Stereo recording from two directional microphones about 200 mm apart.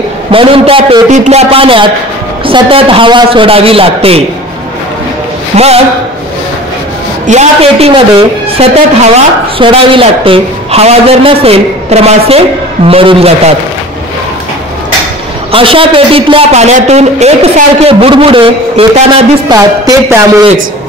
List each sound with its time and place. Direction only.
0.3 s a woman's voice: 25° right (ahead or behind)
5.5 s a man's voice: 35° right (ahead or behind)
7.2 s a man's voice: 30° right (ahead or behind)
15.5 s a woman's voice: 25° right (ahead or behind)
19.5 s a woman's voice: 15° right (ahead or behind)